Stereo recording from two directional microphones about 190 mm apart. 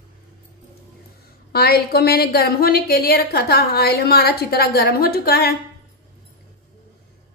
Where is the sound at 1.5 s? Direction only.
55° left (ahead or behind).